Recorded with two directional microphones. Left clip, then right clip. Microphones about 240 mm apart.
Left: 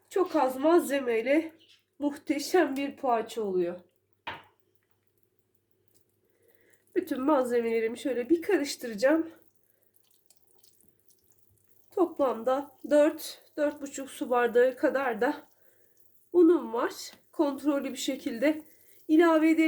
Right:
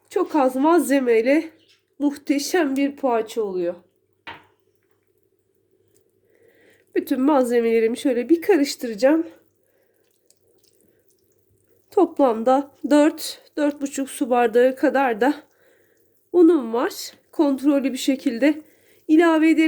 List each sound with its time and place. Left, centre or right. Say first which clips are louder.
0.1 s speech: right 7 dB; right
7.2 s speech: right 8 dB; right
12.1 s speech: right 10 dB; right